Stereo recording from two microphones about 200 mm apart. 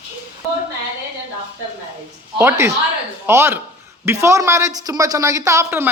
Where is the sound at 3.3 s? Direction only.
10° right (ahead or behind).